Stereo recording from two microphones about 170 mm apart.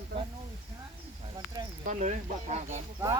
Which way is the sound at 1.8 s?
45° right (ahead or behind).